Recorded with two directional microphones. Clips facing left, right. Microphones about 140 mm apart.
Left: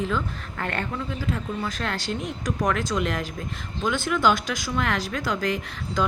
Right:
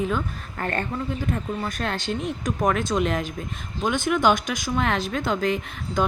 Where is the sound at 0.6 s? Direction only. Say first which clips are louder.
Right 2 dB; 40° right (ahead or behind).